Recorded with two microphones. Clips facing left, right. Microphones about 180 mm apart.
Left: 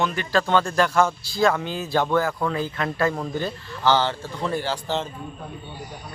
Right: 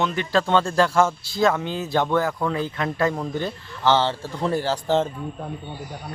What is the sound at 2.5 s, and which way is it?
Speech, 20° right (ahead or behind).